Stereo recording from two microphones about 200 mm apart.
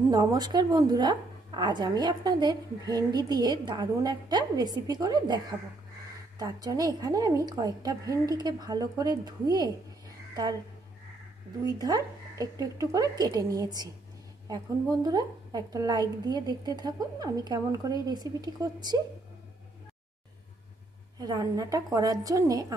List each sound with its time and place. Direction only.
0.1 s a woman's voice: 20° right (ahead or behind)
11.6 s a woman's voice: 20° right (ahead or behind)
21.2 s a woman's voice: 20° right (ahead or behind)